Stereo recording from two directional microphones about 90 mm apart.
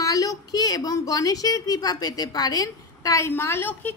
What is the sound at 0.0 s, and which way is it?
A woman's voice, 40° left (ahead or behind).